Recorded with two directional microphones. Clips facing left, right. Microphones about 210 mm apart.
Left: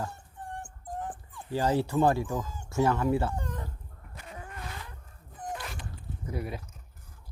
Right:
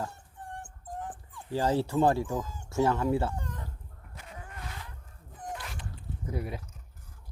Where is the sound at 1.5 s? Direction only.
30° right (ahead or behind).